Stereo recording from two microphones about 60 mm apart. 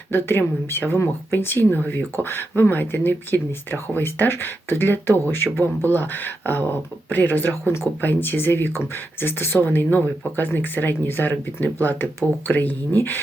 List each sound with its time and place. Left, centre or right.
0.1 s speech: left